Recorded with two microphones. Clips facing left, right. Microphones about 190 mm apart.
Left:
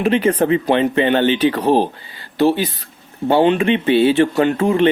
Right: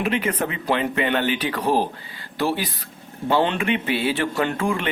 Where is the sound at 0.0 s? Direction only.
30° left (ahead or behind).